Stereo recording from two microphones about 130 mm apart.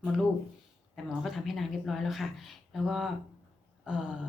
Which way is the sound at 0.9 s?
Centre (ahead or behind).